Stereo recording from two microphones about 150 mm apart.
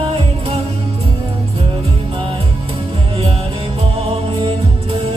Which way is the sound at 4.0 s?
40° right (ahead or behind).